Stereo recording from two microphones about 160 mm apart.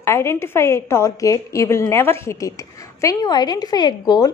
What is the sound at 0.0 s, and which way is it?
A woman's voice, 15° left (ahead or behind).